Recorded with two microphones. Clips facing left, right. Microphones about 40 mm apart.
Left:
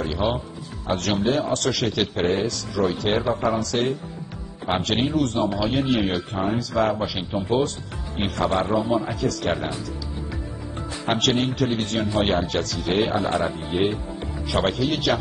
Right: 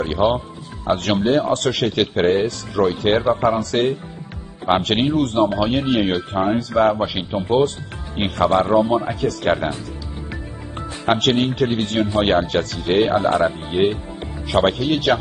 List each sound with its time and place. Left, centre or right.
0.0 s a man's voice: right
6.8 s a man's voice: right
11.1 s a man's voice: right